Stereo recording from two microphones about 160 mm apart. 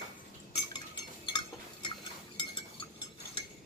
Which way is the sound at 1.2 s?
30° left (ahead or behind).